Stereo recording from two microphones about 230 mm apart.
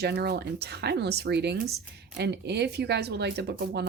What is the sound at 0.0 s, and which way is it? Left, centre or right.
Speech, right.